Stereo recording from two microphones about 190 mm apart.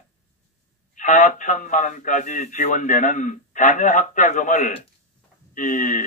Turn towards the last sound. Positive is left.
turn(degrees=45)  # may be behind; listen again after turning